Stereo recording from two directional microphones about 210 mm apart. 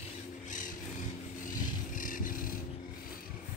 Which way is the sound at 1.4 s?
40° left (ahead or behind).